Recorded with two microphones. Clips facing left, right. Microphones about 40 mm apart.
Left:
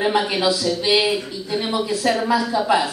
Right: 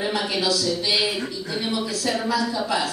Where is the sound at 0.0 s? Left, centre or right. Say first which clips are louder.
Left 5 dB; left.